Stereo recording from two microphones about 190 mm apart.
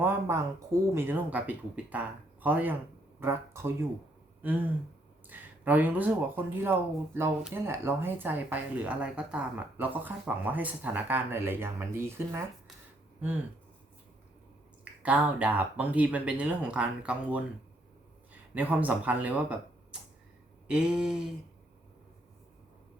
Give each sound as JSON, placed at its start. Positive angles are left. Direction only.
{"t": 0.0, "sound": "speech", "side_deg": -10}
{"t": 5.3, "sound": "speech", "side_deg": -10}
{"t": 15.0, "sound": "speech", "side_deg": -5}
{"t": 18.5, "sound": "speech", "side_deg": -10}
{"t": 20.7, "sound": "a sound", "side_deg": -5}